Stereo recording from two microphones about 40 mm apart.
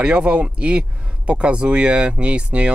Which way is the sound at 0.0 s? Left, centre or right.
Right.